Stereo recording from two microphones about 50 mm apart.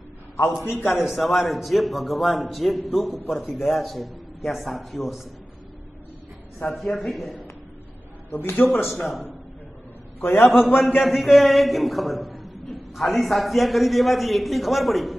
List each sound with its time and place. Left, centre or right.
0.8 s a man's voice: centre
6.6 s a man's voice: centre
8.3 s a man's voice: left
8.9 s a man's voice: centre
10.2 s a man's voice: left
10.5 s a man's voice: centre